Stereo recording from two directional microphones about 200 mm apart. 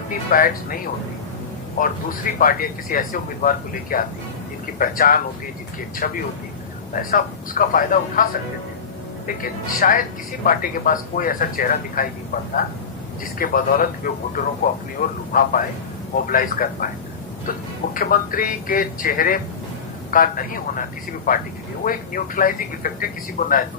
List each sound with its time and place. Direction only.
0.3 s speech: 45° left (ahead or behind)
1.8 s speech: 45° left (ahead or behind)
13.4 s speech: 45° left (ahead or behind)
17.9 s speech: 45° left (ahead or behind)